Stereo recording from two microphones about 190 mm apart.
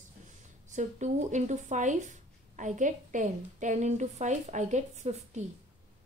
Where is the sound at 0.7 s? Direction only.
40° right (ahead or behind).